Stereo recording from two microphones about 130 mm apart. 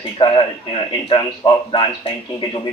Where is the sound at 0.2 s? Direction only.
40° left (ahead or behind).